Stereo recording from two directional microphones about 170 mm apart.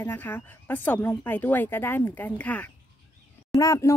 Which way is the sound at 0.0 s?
10° left (ahead or behind).